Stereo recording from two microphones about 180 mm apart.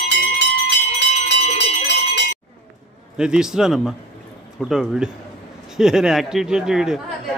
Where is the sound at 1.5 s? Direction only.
70° left (ahead or behind).